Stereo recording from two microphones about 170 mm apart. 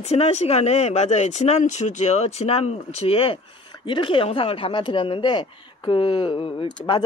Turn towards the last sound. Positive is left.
turn(degrees=30)  # may be behind; listen again after turning